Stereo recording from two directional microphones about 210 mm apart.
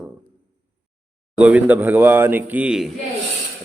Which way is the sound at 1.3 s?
5° right (ahead or behind).